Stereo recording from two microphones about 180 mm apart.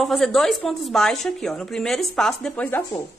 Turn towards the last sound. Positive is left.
turn(degrees=10)  # may be behind; listen again after turning